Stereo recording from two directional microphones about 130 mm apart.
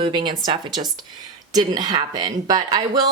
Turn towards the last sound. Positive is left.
turn(degrees=-30)  # may be behind; listen again after turning